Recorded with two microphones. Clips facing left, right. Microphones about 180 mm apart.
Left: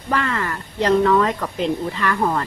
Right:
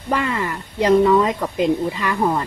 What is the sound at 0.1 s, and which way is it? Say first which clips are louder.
Speech: right 1 dB; 10° right (ahead or behind).